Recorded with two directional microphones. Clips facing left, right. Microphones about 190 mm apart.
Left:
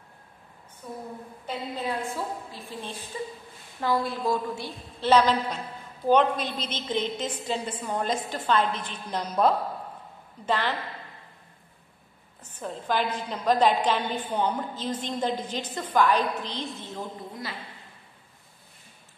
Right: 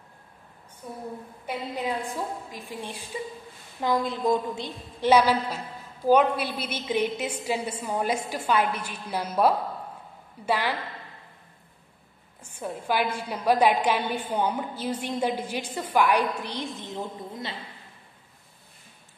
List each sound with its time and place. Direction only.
1.4 s a woman's voice: 15° right (ahead or behind)
12.4 s a woman's voice: 10° right (ahead or behind)